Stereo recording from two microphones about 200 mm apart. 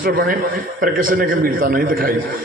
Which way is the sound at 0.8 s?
45° right (ahead or behind).